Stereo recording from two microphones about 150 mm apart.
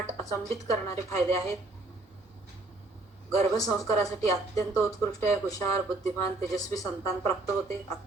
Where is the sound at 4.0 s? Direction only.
20° left (ahead or behind).